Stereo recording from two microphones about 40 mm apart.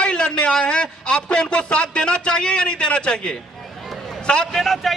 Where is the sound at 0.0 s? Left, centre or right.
Left.